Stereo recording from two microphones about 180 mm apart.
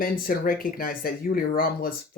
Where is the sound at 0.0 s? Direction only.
50° left (ahead or behind).